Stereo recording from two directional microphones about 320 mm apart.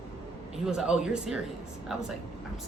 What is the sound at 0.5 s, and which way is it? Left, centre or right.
Speech, centre.